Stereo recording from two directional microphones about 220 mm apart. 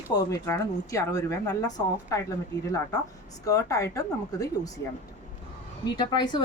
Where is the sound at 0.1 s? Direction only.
15° left (ahead or behind).